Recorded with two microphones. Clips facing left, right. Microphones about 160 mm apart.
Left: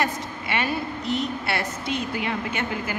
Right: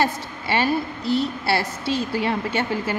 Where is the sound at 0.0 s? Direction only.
30° right (ahead or behind).